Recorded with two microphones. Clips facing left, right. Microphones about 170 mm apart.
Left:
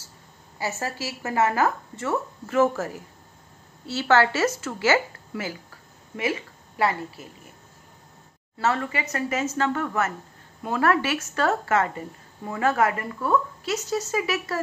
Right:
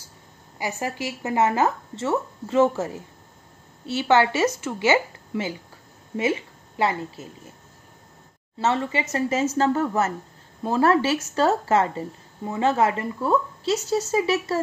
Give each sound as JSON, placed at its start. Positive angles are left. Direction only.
{"t": 0.6, "sound": "speech", "side_deg": -15}
{"t": 6.8, "sound": "speech", "side_deg": -20}
{"t": 8.5, "sound": "speech", "side_deg": -25}